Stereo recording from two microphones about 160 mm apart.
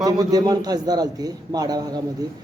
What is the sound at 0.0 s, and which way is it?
A man's voice, 25° right (ahead or behind).